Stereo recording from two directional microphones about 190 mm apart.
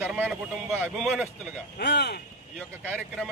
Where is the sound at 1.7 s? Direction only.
60° left (ahead or behind).